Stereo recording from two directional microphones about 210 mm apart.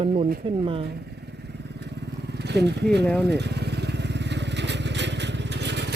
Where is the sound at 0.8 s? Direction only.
50° right (ahead or behind).